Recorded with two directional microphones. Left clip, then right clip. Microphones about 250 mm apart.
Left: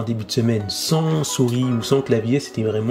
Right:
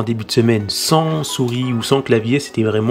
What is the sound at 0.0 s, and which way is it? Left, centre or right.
Speech, centre.